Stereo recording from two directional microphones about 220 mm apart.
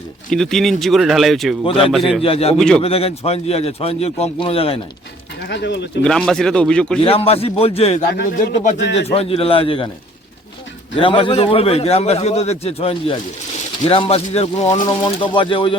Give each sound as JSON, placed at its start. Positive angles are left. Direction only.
{"t": 0.3, "sound": "speech", "side_deg": 0}
{"t": 1.6, "sound": "a man's voice", "side_deg": 25}
{"t": 1.9, "sound": "speech", "side_deg": 0}
{"t": 2.2, "sound": "a man's voice", "side_deg": 25}
{"t": 2.6, "sound": "speech", "side_deg": 5}
{"t": 2.8, "sound": "a man's voice", "side_deg": 25}
{"t": 5.5, "sound": "speech", "side_deg": 50}
{"t": 6.0, "sound": "speech", "side_deg": 5}
{"t": 7.0, "sound": "a man's voice", "side_deg": 25}
{"t": 10.9, "sound": "a man's voice", "side_deg": 25}
{"t": 14.8, "sound": "a man's voice", "side_deg": 20}